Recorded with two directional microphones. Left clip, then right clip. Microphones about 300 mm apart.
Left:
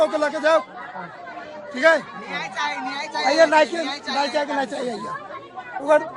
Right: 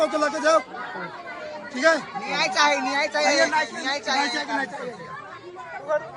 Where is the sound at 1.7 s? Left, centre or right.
Centre.